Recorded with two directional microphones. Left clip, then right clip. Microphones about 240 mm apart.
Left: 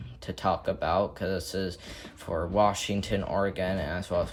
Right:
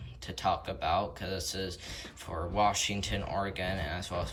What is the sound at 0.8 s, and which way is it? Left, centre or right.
Speech, centre.